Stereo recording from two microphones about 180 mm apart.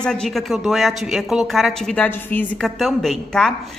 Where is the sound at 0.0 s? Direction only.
5° left (ahead or behind).